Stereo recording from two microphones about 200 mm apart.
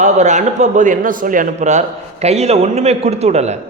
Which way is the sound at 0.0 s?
35° right (ahead or behind).